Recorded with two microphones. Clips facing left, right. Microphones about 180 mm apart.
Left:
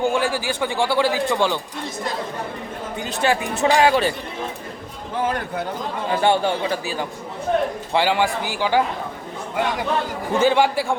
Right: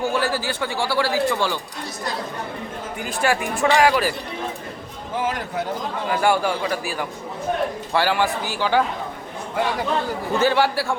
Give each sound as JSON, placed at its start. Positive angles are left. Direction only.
{"t": 0.0, "sound": "a man's voice", "side_deg": 15}
{"t": 3.0, "sound": "speech", "side_deg": 20}
{"t": 6.1, "sound": "a man's voice", "side_deg": 25}
{"t": 10.3, "sound": "a man's voice", "side_deg": 15}